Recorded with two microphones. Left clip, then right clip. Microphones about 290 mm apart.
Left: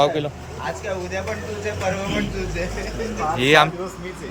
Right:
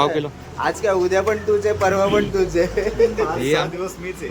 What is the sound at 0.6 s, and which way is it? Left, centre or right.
Speech, centre.